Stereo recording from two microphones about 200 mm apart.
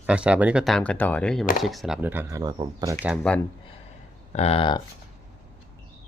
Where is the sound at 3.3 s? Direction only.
5° left (ahead or behind).